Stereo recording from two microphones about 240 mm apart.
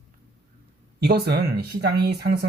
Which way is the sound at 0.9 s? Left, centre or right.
Right.